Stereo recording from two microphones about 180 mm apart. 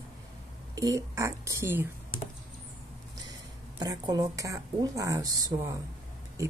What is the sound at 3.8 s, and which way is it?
A woman's voice, 20° right (ahead or behind).